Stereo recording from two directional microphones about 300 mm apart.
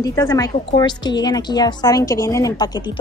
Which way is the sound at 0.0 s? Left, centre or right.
Centre.